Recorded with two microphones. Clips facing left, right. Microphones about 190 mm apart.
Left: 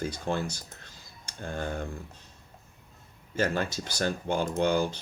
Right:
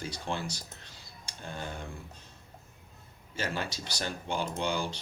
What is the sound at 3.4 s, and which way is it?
Speech, 50° left (ahead or behind).